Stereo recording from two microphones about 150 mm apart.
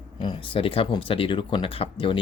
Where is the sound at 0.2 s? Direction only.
35° left (ahead or behind).